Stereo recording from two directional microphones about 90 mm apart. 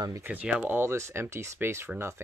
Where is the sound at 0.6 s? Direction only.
25° right (ahead or behind).